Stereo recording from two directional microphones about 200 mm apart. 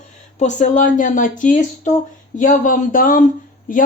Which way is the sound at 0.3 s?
35° left (ahead or behind).